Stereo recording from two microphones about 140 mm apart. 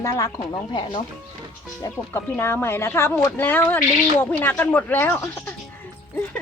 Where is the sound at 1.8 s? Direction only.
15° left (ahead or behind).